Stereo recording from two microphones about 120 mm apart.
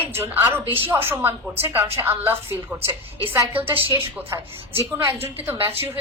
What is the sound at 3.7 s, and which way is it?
Speech, 50° right (ahead or behind).